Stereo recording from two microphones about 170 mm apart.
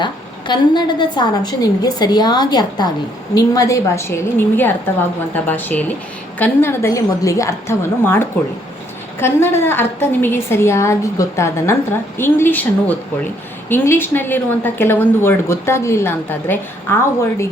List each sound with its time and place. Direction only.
0.0 s a woman's voice: 25° left (ahead or behind)